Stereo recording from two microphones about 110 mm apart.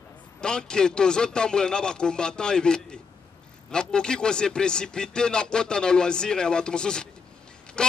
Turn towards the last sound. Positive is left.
turn(degrees=10)  # may be behind; listen again after turning